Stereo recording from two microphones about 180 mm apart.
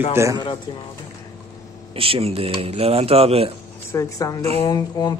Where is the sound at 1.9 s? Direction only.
30° right (ahead or behind).